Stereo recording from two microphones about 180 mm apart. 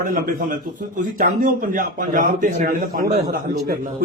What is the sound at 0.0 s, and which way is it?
Speech, 50° right (ahead or behind).